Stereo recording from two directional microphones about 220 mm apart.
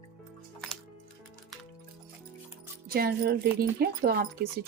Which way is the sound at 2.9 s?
40° right (ahead or behind).